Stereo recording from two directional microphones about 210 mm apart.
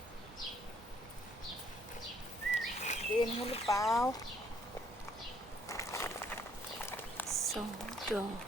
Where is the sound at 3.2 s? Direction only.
25° left (ahead or behind).